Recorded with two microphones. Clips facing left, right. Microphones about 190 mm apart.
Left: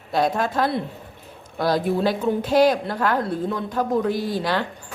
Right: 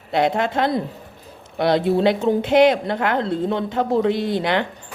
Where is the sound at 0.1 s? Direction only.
25° right (ahead or behind).